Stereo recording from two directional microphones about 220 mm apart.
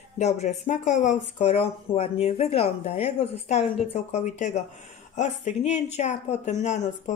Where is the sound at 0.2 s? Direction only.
30° left (ahead or behind).